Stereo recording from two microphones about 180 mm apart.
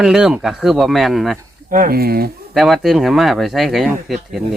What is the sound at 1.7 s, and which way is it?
Speech, 50° right (ahead or behind).